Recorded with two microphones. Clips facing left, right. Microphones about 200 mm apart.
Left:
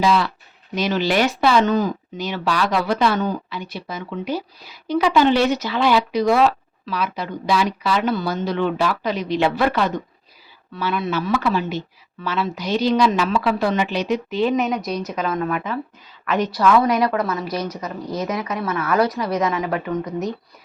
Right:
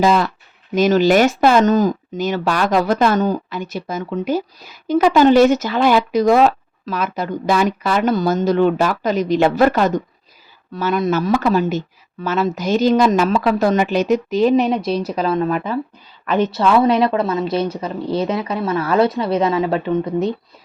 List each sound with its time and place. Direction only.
0.0 s a woman's voice: 45° right (ahead or behind); by 20.3 s 30° right (ahead or behind)